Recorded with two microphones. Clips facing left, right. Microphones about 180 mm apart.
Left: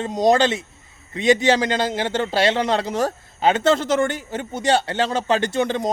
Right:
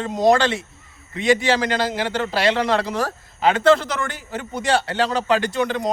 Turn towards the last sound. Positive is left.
turn(degrees=25)  # may be behind; listen again after turning